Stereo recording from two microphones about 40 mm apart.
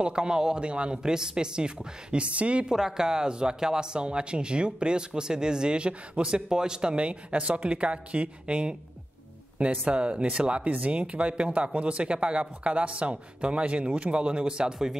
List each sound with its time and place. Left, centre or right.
0.0 s speech: right
2.7 s speech: centre